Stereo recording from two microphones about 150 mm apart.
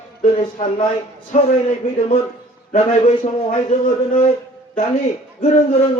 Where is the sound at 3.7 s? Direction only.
45° left (ahead or behind).